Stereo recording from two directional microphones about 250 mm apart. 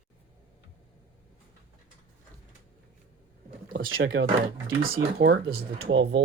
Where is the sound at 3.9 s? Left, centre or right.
Right.